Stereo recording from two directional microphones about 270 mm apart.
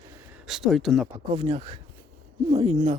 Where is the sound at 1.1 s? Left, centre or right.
Centre.